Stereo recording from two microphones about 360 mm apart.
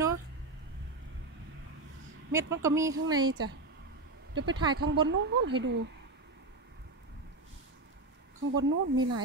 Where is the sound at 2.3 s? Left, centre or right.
Centre.